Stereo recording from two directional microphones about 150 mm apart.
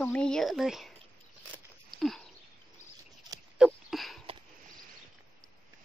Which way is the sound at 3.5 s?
5° right (ahead or behind).